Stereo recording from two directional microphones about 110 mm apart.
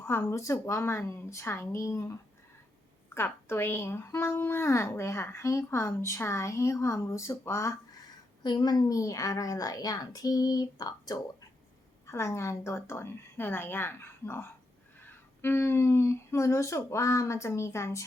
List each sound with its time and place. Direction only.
0.0 s a woman's voice: 20° left (ahead or behind)
3.2 s a woman's voice: 20° left (ahead or behind)
8.4 s a woman's voice: 40° left (ahead or behind)